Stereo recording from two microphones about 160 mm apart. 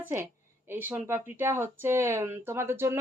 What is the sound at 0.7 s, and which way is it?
Speech, 15° right (ahead or behind).